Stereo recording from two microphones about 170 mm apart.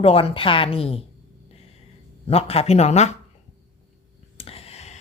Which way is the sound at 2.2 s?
35° left (ahead or behind).